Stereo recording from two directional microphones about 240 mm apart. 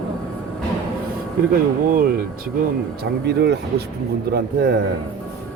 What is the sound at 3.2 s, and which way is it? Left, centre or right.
Speech, right.